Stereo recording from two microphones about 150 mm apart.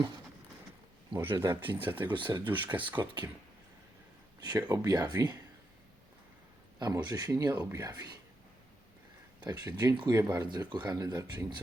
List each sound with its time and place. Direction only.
1.2 s speech: 15° right (ahead or behind)
4.4 s speech: 25° right (ahead or behind)
6.7 s speech: 25° right (ahead or behind)
9.4 s speech: 25° right (ahead or behind)